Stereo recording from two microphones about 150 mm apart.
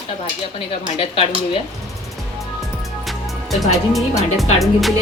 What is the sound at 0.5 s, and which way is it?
Speech, 40° left (ahead or behind).